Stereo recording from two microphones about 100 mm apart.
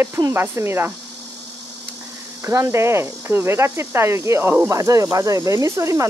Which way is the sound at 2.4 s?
30° right (ahead or behind).